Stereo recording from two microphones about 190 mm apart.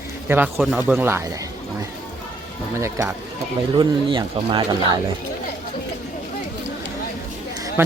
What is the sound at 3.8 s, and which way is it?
A man's voice, 25° right (ahead or behind).